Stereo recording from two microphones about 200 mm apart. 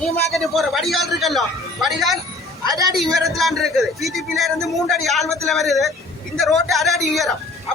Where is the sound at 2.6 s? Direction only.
15° right (ahead or behind).